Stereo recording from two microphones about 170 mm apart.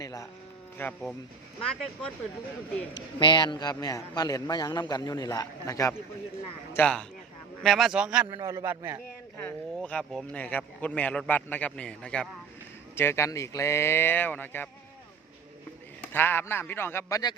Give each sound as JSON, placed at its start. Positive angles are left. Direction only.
{"t": 0.0, "sound": "vehicle", "side_deg": 20}
{"t": 0.8, "sound": "speech", "side_deg": 10}
{"t": 3.2, "sound": "a man's voice", "side_deg": 25}
{"t": 6.7, "sound": "a man's voice", "side_deg": 5}
{"t": 8.3, "sound": "a man's voice", "side_deg": -20}
{"t": 9.4, "sound": "speech", "side_deg": 5}
{"t": 16.0, "sound": "speech", "side_deg": 10}